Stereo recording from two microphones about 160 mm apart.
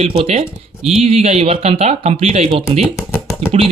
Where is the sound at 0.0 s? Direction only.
40° right (ahead or behind).